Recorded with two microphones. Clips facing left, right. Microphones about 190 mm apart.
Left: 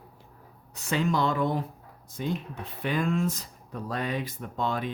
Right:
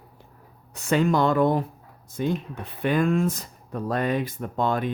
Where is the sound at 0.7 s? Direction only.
55° right (ahead or behind).